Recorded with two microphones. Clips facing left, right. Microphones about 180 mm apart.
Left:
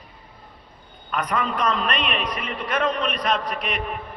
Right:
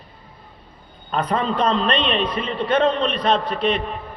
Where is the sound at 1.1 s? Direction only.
30° right (ahead or behind).